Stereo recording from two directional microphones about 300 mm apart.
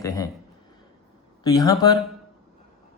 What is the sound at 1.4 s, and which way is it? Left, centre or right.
Speech, centre.